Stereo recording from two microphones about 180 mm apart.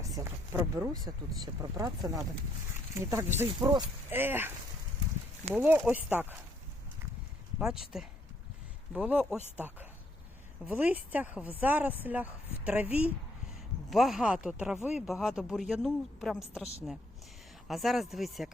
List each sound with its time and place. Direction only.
0.0 s speech: 15° right (ahead or behind)
4.1 s speech: 10° right (ahead or behind)
5.5 s speech: 10° right (ahead or behind)
7.6 s speech: 5° right (ahead or behind)
17.7 s speech: centre (ahead or behind)